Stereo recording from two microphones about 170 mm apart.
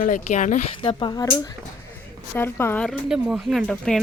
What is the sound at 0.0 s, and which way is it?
Speech, 45° left (ahead or behind).